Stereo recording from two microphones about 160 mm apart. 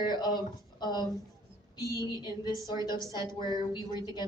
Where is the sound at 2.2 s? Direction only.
30° left (ahead or behind).